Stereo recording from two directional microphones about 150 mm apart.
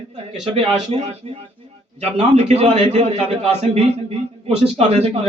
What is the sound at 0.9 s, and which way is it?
Speech, 40° right (ahead or behind).